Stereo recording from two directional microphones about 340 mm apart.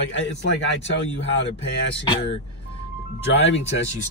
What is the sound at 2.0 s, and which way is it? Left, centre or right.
Speech, centre.